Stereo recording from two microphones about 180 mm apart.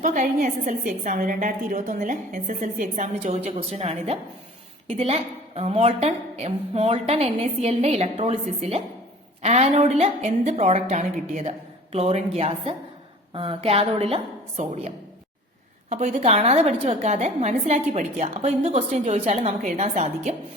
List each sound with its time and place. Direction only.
0.0 s a woman's voice: 45° right (ahead or behind)